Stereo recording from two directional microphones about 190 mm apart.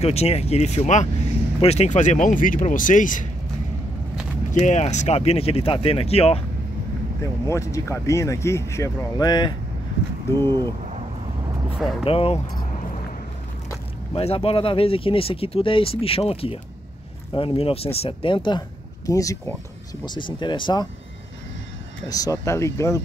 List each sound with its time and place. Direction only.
0.0 s speech: 35° left (ahead or behind)
4.5 s speech: 40° left (ahead or behind)
7.4 s speech: 15° left (ahead or behind)
11.7 s speech: centre (ahead or behind)
12.0 s speech: 30° left (ahead or behind)
14.1 s speech: 30° left (ahead or behind)
22.1 s speech: 15° left (ahead or behind)